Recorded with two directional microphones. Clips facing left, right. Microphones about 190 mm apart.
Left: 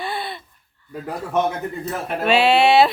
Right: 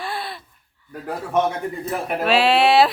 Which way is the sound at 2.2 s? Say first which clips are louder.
Left 1 dB; centre (ahead or behind).